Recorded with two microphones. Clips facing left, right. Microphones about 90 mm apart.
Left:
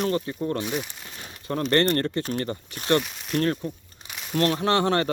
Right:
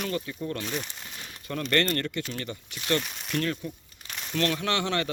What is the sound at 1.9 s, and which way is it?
Speech, 35° left (ahead or behind).